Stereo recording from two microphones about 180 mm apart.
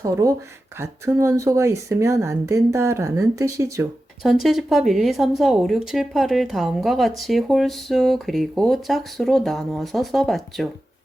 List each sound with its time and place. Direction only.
0.0 s speech: 20° right (ahead or behind)
4.2 s speech: centre (ahead or behind)